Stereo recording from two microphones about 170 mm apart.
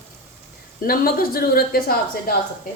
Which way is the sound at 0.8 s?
60° left (ahead or behind).